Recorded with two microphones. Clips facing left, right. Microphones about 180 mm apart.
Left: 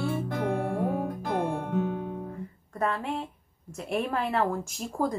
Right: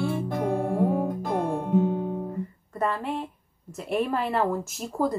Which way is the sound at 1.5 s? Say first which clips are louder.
Right 5 dB; 35° right (ahead or behind).